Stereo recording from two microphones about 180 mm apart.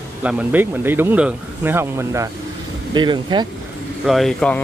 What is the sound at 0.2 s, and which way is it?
Speech, 5° right (ahead or behind).